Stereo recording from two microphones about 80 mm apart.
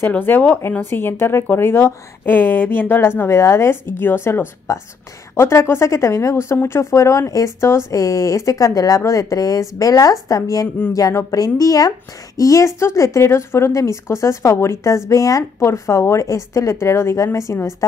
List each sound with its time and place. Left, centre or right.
0.0 s a woman's voice: left